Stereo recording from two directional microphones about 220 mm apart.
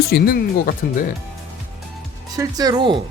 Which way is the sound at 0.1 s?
40° left (ahead or behind).